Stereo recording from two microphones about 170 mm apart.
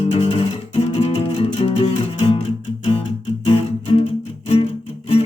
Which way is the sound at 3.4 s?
35° left (ahead or behind).